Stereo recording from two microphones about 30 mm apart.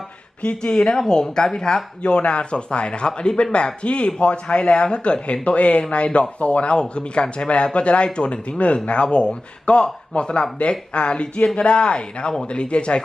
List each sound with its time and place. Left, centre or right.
0.6 s speech: left
2.0 s speech: left